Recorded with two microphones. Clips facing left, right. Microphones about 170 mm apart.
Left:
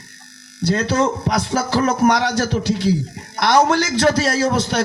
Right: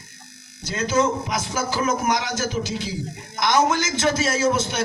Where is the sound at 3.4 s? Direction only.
60° left (ahead or behind).